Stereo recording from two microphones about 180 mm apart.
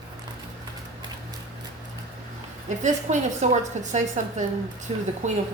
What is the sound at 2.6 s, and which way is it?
A woman's voice, 40° right (ahead or behind).